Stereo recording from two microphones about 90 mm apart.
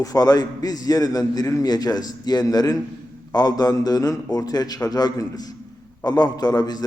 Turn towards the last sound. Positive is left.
turn(degrees=45)  # may be behind; listen again after turning